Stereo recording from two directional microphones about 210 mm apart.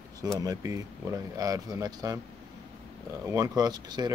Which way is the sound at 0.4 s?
15° right (ahead or behind).